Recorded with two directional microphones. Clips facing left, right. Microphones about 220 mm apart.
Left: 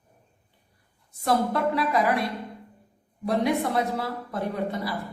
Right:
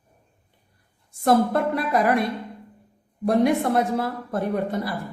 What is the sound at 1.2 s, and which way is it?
Speech, 50° right (ahead or behind).